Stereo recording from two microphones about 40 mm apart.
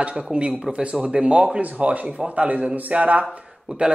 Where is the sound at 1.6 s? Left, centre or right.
Right.